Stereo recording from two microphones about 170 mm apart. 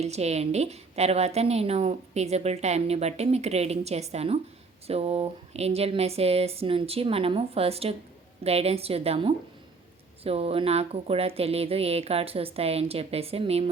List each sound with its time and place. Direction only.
0.0 s a woman's voice: 40° right (ahead or behind)